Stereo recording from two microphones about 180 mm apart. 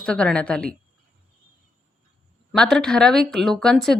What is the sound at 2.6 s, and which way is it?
Speech, centre (ahead or behind).